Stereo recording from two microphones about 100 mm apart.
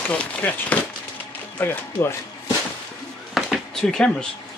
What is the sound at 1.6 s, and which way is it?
Speech, 20° left (ahead or behind).